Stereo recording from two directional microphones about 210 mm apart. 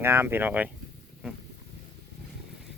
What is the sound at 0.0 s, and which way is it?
Speech, 10° right (ahead or behind).